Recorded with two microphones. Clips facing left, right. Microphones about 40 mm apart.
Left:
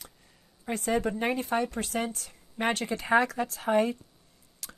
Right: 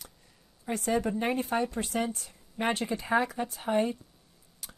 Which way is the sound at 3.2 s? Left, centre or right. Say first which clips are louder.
Left 3 dB; left.